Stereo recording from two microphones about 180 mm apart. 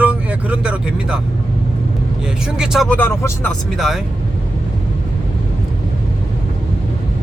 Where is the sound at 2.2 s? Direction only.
5° right (ahead or behind).